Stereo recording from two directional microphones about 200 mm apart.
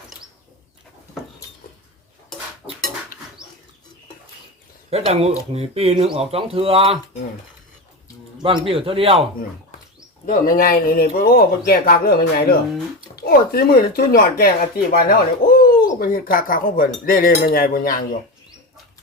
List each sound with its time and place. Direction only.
4.9 s speech: 30° right (ahead or behind)
8.4 s speech: 25° right (ahead or behind)
10.2 s speech: 45° left (ahead or behind)